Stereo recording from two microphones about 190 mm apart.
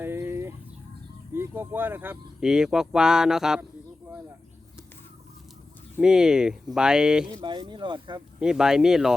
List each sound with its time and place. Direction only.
0.0 s fowl: 10° right (ahead or behind)
1.4 s speech: 10° right (ahead or behind)
6.0 s speech: 5° right (ahead or behind)
7.4 s speech: 25° right (ahead or behind)
8.4 s speech: 5° right (ahead or behind)